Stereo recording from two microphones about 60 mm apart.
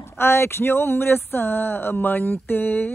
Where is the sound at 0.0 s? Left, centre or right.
Left.